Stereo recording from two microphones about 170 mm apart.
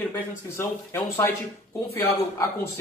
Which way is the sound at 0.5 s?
15° left (ahead or behind).